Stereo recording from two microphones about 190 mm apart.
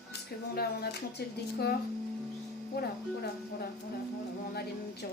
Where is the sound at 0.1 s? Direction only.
55° left (ahead or behind).